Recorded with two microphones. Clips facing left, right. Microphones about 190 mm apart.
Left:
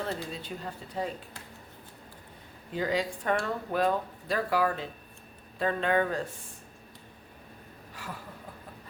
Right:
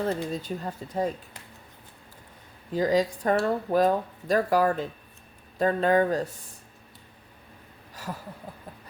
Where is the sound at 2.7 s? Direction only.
40° right (ahead or behind).